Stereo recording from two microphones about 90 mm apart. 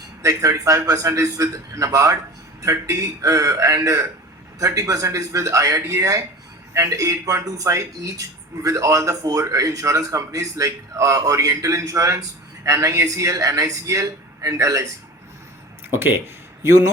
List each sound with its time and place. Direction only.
0.2 s speech: 40° right (ahead or behind)
15.9 s speech: 25° right (ahead or behind)